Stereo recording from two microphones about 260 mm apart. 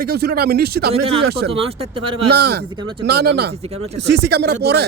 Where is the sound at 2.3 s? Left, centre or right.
Right.